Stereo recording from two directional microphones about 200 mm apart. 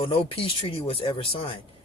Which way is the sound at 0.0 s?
25° left (ahead or behind).